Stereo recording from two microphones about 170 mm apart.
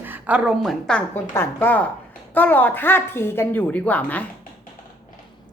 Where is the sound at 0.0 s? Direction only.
10° right (ahead or behind); by 4.3 s 10° left (ahead or behind).